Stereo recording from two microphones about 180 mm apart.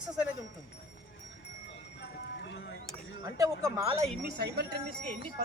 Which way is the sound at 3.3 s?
20° right (ahead or behind).